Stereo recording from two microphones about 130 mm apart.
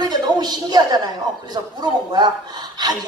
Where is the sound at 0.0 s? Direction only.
30° right (ahead or behind).